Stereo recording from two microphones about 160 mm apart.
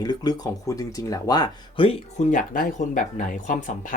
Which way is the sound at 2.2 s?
60° left (ahead or behind).